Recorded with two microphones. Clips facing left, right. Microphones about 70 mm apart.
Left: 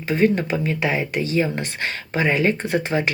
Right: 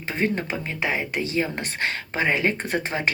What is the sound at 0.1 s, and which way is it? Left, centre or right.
Speech, right.